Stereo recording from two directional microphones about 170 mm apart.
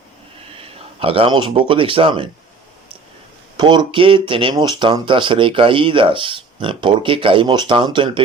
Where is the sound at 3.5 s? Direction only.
25° right (ahead or behind).